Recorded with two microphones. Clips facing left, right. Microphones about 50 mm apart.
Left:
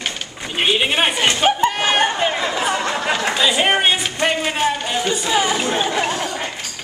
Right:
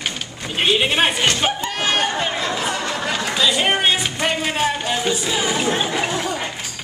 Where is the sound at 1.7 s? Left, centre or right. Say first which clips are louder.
Left 3 dB; centre.